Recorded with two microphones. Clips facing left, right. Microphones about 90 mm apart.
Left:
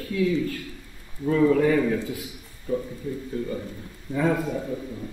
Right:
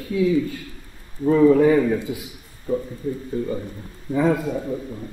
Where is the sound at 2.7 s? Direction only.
25° right (ahead or behind).